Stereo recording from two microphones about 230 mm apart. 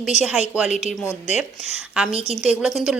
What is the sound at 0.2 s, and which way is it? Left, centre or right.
Speech, centre.